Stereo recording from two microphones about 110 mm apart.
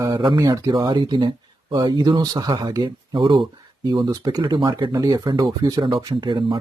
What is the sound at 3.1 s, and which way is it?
Speech, 50° right (ahead or behind).